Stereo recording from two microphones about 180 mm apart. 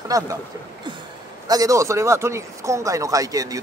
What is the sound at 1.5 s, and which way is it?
Speech, 20° right (ahead or behind).